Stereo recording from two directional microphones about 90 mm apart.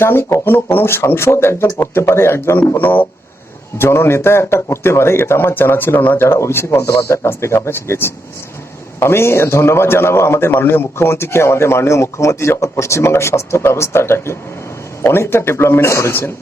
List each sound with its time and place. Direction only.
0.0 s a man's voice: 25° left (ahead or behind)